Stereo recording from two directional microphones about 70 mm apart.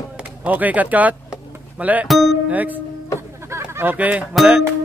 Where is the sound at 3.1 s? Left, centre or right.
Right.